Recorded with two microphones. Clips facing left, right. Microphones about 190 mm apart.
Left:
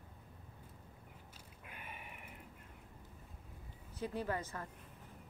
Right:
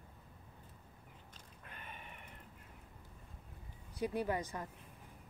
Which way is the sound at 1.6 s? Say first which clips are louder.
Left 1 dB; 10° left (ahead or behind).